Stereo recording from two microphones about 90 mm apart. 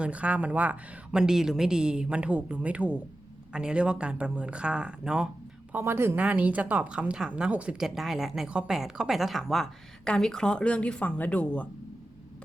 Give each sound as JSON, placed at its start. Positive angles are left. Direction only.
{"t": 0.0, "sound": "a woman's voice", "side_deg": -15}
{"t": 5.7, "sound": "speech", "side_deg": -25}
{"t": 6.1, "sound": "speech", "side_deg": -15}